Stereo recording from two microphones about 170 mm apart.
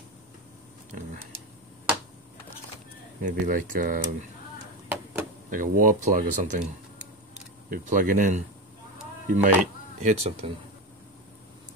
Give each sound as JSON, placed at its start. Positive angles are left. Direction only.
{"t": 3.2, "sound": "speech", "side_deg": -50}
{"t": 5.5, "sound": "speech", "side_deg": -50}
{"t": 7.7, "sound": "speech", "side_deg": -50}